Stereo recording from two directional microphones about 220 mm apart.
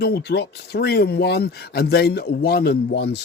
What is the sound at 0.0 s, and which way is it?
Speech, 50° left (ahead or behind).